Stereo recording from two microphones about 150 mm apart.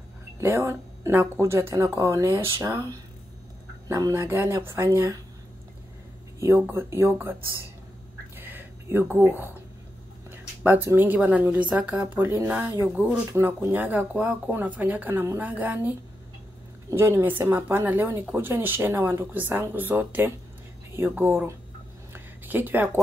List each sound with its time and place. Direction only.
0.4 s speech: 15° right (ahead or behind)
6.6 s speech: 15° right (ahead or behind)
8.4 s a sound: 15° right (ahead or behind)
10.3 s speech: 15° right (ahead or behind)
16.9 s speech: 15° right (ahead or behind)
22.1 s a sound: 15° right (ahead or behind)